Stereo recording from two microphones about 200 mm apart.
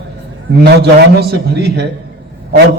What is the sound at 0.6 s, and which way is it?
A man's voice, 55° right (ahead or behind).